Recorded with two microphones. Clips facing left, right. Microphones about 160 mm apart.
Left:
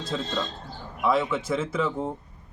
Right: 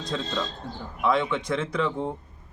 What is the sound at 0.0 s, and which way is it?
Speech, 5° left (ahead or behind).